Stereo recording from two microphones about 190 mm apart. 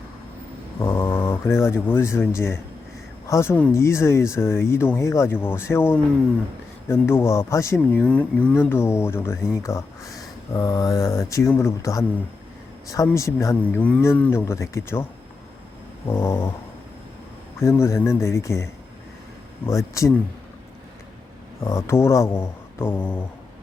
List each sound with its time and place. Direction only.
0.8 s mantra: 20° left (ahead or behind)
1.1 s speech: 25° left (ahead or behind)
13.1 s speech: 15° left (ahead or behind)
16.0 s speech: 15° left (ahead or behind)
17.6 s speech: 15° left (ahead or behind)
21.6 s speech: 15° left (ahead or behind)